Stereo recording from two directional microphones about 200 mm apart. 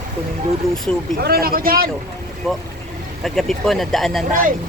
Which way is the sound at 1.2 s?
50° right (ahead or behind).